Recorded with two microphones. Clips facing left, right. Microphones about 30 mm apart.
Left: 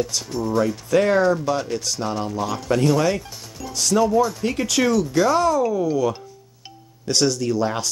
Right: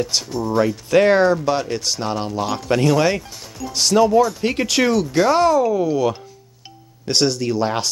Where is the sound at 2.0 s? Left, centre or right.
Right.